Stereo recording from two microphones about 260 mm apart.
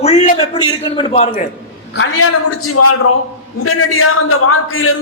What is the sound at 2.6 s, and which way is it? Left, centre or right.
A man's voice, left.